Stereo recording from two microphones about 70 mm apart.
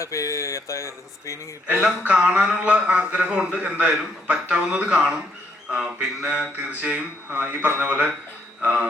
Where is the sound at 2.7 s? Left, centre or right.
Centre.